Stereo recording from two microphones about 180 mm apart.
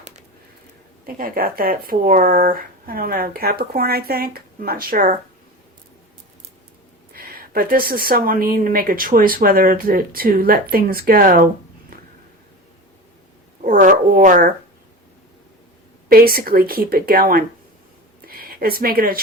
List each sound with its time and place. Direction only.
1.0 s speech: 55° right (ahead or behind)
7.1 s speech: 55° right (ahead or behind)
13.7 s a sound: 50° right (ahead or behind)
16.0 s speech: 55° right (ahead or behind)